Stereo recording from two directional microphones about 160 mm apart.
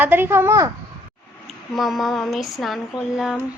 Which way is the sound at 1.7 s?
Centre (ahead or behind).